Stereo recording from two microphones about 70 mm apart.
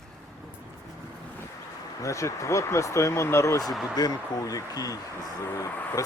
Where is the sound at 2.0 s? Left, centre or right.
Left.